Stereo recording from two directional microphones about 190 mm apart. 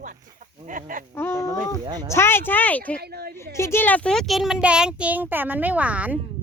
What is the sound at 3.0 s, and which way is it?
Speech, 55° right (ahead or behind).